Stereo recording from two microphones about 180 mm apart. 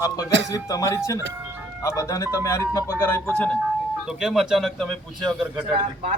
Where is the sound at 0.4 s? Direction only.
20° left (ahead or behind); by 5.5 s centre (ahead or behind).